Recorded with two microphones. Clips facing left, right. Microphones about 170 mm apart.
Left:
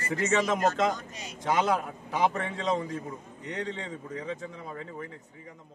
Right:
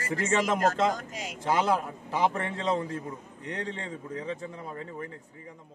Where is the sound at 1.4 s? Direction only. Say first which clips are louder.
Even; 5° right (ahead or behind).